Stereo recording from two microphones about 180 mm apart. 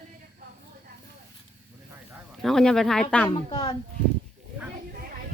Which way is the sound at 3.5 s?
25° left (ahead or behind).